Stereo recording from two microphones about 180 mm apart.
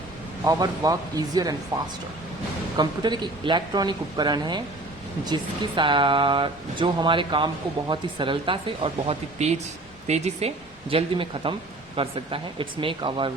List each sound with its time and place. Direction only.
0.4 s speech: 20° right (ahead or behind)
2.7 s speech: 25° right (ahead or behind)